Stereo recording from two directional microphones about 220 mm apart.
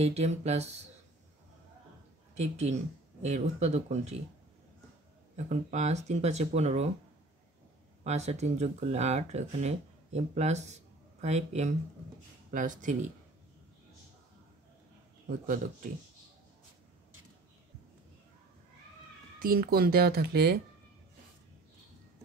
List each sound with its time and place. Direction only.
0.0 s speech: 30° right (ahead or behind)
2.3 s speech: 30° right (ahead or behind)
5.3 s speech: 35° right (ahead or behind)
8.0 s speech: 30° right (ahead or behind)
15.2 s speech: 35° right (ahead or behind)
19.4 s speech: 40° right (ahead or behind)